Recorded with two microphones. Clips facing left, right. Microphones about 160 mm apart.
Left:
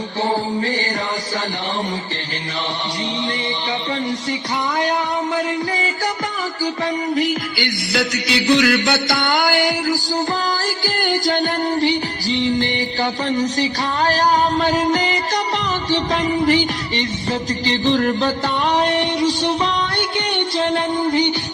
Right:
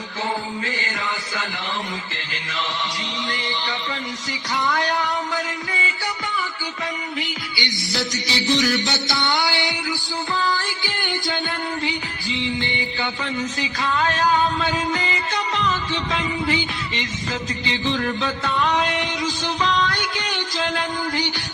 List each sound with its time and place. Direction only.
0.3 s music: 35° left (ahead or behind)
7.2 s music: 50° left (ahead or behind)
17.7 s music: 40° left (ahead or behind)